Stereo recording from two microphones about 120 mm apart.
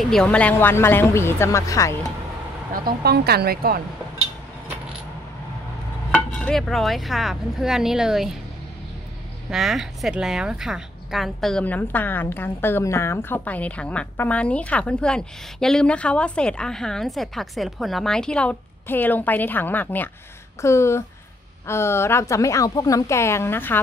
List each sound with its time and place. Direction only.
0.0 s a woman's voice: 5° left (ahead or behind); by 2.0 s 25° left (ahead or behind)
6.1 s speech: 10° left (ahead or behind)
9.5 s speech: centre (ahead or behind)
11.6 s a woman's voice: 15° left (ahead or behind)